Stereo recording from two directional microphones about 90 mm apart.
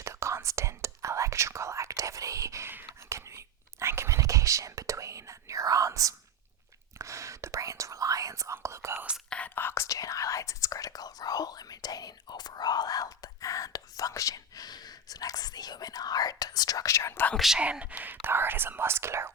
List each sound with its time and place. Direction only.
0.0 s whispering: 30° right (ahead or behind)
9.3 s whispering: 20° left (ahead or behind); by 17.2 s 35° left (ahead or behind)
17.3 s whispering: 5° right (ahead or behind)
17.6 s whispering: 15° right (ahead or behind)